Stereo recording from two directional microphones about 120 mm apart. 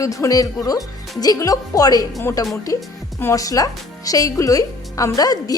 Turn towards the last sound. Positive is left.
turn(degrees=30)  # may be behind; listen again after turning